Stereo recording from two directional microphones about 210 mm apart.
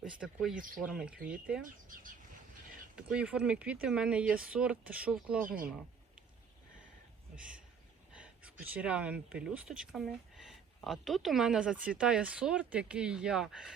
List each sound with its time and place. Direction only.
0.0 s speech: centre (ahead or behind)
1.6 s speech: 40° right (ahead or behind)
2.9 s speech: 5° right (ahead or behind)
8.1 s a sound: 5° right (ahead or behind)
8.7 s speech: 5° right (ahead or behind)